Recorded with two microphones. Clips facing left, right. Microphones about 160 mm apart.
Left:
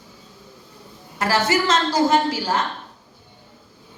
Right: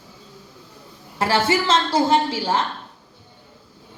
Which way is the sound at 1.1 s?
30° right (ahead or behind).